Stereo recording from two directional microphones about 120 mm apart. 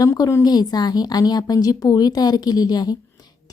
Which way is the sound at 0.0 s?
25° left (ahead or behind).